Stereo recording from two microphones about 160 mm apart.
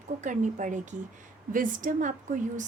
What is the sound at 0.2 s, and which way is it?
A woman's voice, 50° right (ahead or behind).